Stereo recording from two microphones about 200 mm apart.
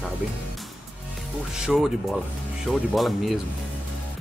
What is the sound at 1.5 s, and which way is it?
Speech, 5° right (ahead or behind).